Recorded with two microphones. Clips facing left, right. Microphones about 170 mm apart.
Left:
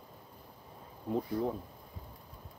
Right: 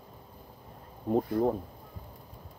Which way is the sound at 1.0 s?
50° right (ahead or behind).